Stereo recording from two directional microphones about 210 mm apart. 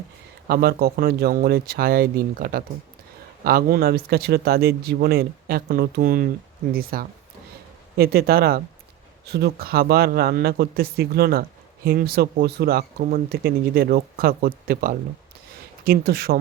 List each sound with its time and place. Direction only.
0.4 s speech: 45° right (ahead or behind)